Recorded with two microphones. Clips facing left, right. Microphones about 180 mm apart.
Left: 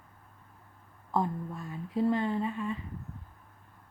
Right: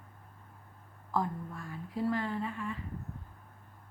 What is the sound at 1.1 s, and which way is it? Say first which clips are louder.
Speech: left 3 dB; 20° left (ahead or behind).